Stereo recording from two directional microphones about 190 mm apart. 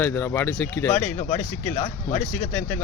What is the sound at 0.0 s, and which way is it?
Speech, 10° left (ahead or behind).